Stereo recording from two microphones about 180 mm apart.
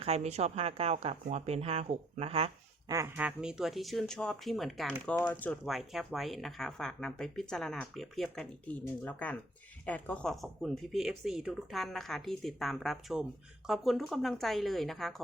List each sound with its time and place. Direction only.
0.0 s speech: 35° right (ahead or behind)
2.9 s speech: 10° right (ahead or behind)